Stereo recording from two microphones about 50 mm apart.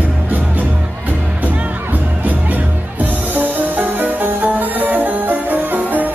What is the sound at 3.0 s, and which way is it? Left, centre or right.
Music, right.